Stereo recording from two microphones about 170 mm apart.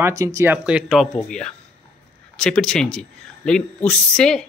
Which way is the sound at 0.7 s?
5° right (ahead or behind).